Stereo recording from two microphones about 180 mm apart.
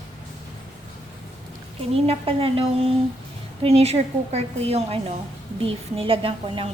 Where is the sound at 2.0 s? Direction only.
30° right (ahead or behind).